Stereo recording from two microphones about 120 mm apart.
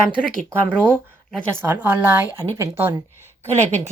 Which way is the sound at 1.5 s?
15° right (ahead or behind).